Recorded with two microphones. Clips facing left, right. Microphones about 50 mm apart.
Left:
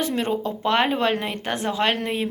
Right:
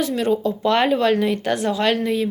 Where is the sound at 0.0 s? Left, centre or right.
Left.